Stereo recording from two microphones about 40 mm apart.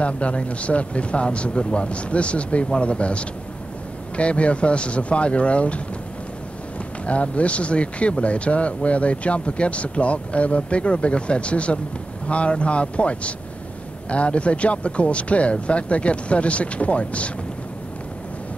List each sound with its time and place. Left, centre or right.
0.0 s speech: left
7.1 s speech: left